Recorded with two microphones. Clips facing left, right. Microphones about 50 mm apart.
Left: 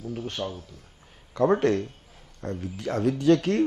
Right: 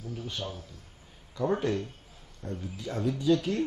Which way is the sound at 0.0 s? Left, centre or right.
Left.